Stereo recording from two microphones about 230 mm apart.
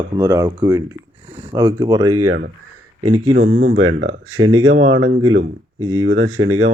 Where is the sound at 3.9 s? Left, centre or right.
Right.